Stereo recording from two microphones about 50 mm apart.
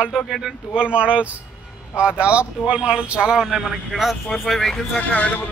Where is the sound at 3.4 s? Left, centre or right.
Centre.